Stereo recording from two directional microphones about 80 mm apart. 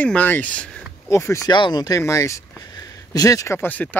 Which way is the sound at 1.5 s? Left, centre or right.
Left.